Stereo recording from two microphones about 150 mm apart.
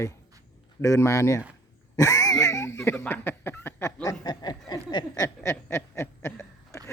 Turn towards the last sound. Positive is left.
turn(degrees=20)  # may be behind; listen again after turning